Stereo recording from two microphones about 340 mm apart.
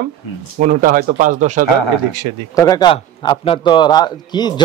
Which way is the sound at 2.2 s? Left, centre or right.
Right.